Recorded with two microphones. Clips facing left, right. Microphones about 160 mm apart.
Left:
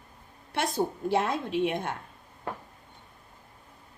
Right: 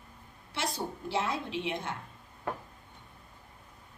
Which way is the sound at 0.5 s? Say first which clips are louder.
Left 7 dB; 50° left (ahead or behind).